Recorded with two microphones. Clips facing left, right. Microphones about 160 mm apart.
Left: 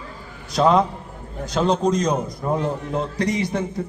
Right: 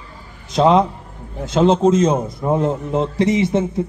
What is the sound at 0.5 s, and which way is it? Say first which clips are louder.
A man's voice: right 3 dB; 20° right (ahead or behind).